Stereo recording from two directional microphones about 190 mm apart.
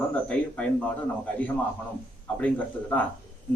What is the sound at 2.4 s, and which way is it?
Speech, 5° left (ahead or behind).